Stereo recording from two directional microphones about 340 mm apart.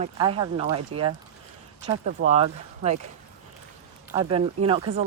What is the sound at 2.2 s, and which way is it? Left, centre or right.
Speech, right.